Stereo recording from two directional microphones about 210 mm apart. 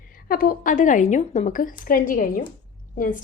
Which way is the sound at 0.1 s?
45° left (ahead or behind).